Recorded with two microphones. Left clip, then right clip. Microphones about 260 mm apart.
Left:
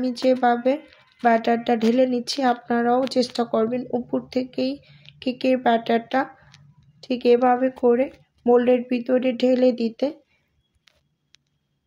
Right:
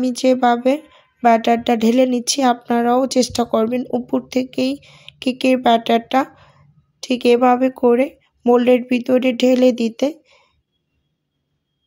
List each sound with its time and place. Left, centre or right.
0.0 s speech: right